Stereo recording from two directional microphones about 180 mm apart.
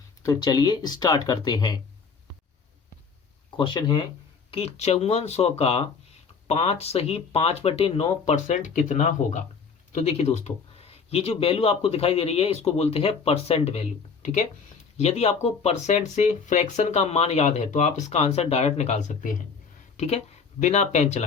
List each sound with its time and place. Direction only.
0.2 s speech: 20° left (ahead or behind)
3.6 s speech: 25° left (ahead or behind)
4.5 s speech: 35° left (ahead or behind)